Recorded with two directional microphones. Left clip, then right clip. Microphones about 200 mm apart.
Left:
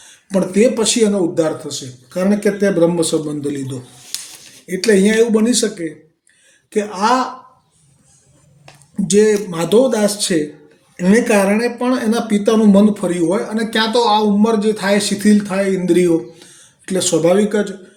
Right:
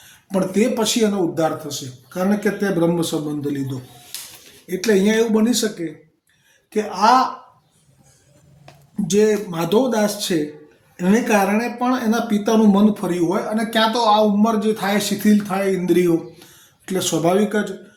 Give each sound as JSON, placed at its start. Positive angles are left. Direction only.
{"t": 0.3, "sound": "speech", "side_deg": 5}
{"t": 4.1, "sound": "a sound", "side_deg": 40}
{"t": 4.6, "sound": "speech", "side_deg": 10}
{"t": 9.0, "sound": "speech", "side_deg": 15}